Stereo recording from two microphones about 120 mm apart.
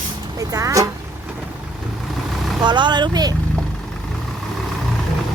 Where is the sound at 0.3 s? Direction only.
30° right (ahead or behind).